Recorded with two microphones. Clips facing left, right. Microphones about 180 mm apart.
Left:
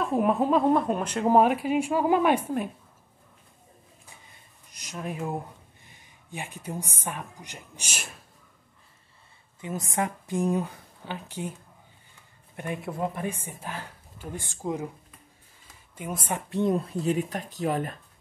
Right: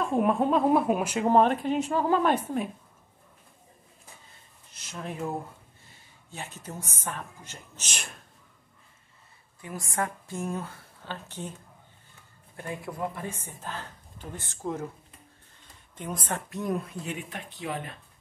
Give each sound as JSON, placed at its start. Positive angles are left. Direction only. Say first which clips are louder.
{"t": 0.0, "sound": "speech", "louder": "left 1 dB", "side_deg": 0}
{"t": 1.3, "sound": "speech", "louder": "left 2 dB", "side_deg": 10}
{"t": 4.7, "sound": "a woman's voice", "louder": "left 2 dB", "side_deg": 15}
{"t": 9.6, "sound": "speech", "louder": "left 3 dB", "side_deg": 20}
{"t": 12.5, "sound": "speech", "louder": "left 3 dB", "side_deg": 20}
{"t": 15.6, "sound": "a sound", "louder": "left 1 dB", "side_deg": 5}
{"t": 16.4, "sound": "speech", "louder": "left 8 dB", "side_deg": 30}